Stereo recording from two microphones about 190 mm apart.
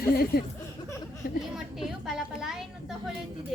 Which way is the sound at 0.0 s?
55° left (ahead or behind).